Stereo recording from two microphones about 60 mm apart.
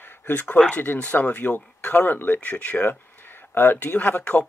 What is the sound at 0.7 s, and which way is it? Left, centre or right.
Speech, left.